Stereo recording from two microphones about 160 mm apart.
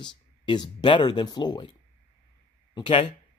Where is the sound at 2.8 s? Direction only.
35° left (ahead or behind).